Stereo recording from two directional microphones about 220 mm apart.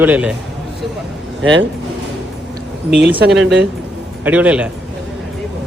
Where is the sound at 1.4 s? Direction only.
60° right (ahead or behind).